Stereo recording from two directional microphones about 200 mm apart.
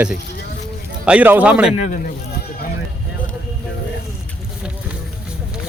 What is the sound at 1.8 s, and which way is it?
Speech, 40° left (ahead or behind).